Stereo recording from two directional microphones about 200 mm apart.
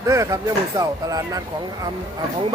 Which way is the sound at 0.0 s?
15° right (ahead or behind).